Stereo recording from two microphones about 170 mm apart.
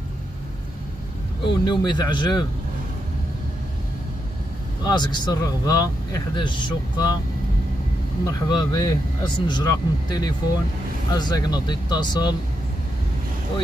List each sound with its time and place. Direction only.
1.4 s speech: 25° left (ahead or behind)
4.8 s speech: 25° left (ahead or behind)
8.3 s speech: 25° left (ahead or behind)